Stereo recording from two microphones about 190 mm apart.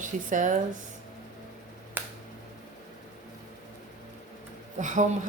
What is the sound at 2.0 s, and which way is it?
Finger snapping, 10° right (ahead or behind).